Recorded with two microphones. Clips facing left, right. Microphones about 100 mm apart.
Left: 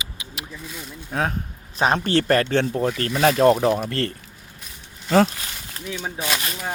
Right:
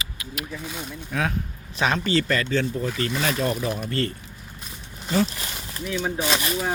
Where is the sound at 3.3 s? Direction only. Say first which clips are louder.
Left 9 dB; 70° left (ahead or behind).